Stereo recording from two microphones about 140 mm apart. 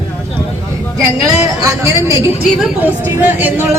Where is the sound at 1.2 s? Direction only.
25° right (ahead or behind).